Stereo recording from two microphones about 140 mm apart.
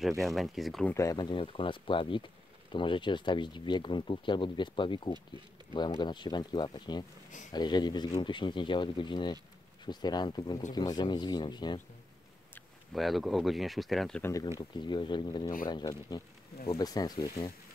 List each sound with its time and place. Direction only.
0.2 s speech: centre (ahead or behind)
0.9 s speech: 25° left (ahead or behind)
12.9 s speech: centre (ahead or behind)
14.2 s speech: 25° left (ahead or behind)